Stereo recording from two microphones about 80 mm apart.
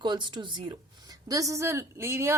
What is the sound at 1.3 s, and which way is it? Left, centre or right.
A woman's voice, right.